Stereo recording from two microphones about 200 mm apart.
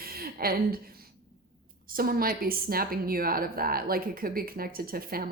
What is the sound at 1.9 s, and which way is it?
A woman's voice, 45° right (ahead or behind).